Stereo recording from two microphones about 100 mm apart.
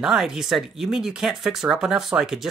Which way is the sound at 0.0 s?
5° right (ahead or behind).